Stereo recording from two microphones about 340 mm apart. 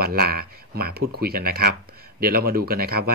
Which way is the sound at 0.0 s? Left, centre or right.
Right.